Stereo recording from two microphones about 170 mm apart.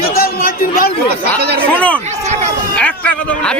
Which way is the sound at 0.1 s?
60° left (ahead or behind).